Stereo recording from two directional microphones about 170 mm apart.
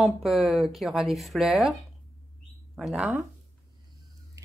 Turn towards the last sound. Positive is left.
turn(degrees=0)  # may be behind; listen again after turning